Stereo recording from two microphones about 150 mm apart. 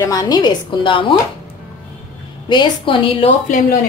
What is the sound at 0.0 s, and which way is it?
A woman's voice, 25° left (ahead or behind).